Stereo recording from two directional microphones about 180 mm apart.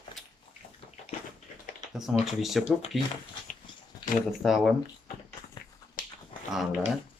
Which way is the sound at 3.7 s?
25° left (ahead or behind).